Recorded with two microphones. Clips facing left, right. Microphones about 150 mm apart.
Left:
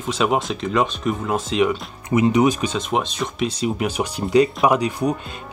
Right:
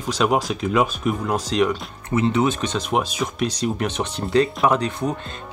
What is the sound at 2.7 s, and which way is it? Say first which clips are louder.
Speech: even; 5° right (ahead or behind).